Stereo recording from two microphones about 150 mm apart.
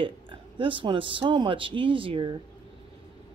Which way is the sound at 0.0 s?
35° right (ahead or behind).